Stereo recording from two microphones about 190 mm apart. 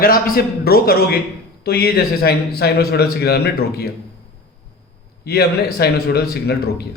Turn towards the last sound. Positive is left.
turn(degrees=60)  # may be behind; listen again after turning